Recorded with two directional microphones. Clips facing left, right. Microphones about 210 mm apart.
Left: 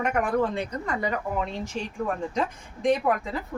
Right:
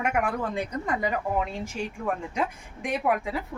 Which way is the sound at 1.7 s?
35° left (ahead or behind).